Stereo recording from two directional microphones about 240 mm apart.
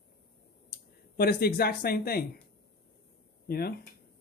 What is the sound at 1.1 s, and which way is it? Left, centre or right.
Speech, left.